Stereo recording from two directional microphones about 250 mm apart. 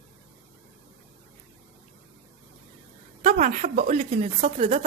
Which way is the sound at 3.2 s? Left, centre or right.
Right.